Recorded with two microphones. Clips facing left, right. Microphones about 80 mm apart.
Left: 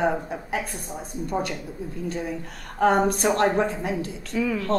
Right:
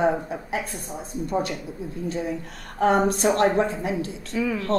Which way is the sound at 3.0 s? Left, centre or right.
Right.